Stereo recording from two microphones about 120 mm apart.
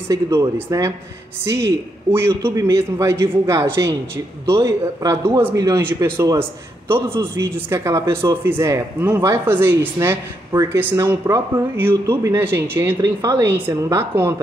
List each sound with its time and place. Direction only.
0.1 s a man's voice: 30° right (ahead or behind)
13.0 s a man's voice: 30° right (ahead or behind)